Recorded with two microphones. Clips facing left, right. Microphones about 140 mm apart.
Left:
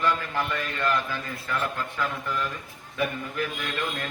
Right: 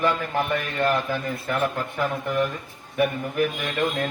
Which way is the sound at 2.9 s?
55° right (ahead or behind).